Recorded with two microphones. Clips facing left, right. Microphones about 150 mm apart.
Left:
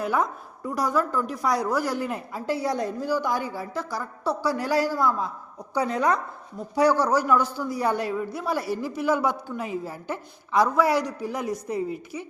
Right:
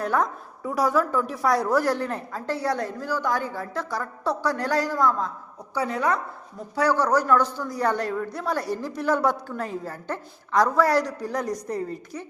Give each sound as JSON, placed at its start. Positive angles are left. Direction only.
{"t": 0.0, "sound": "a man's voice", "side_deg": 5}
{"t": 5.7, "sound": "a man's voice", "side_deg": 20}